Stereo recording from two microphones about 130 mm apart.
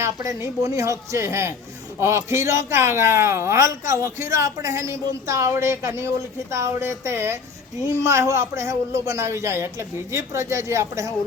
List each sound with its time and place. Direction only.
0.0 s speech: 25° right (ahead or behind)